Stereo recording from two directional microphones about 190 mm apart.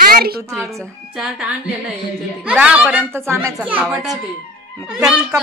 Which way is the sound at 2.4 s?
5° right (ahead or behind).